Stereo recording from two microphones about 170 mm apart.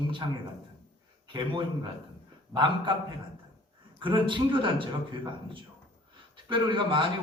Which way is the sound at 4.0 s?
30° right (ahead or behind).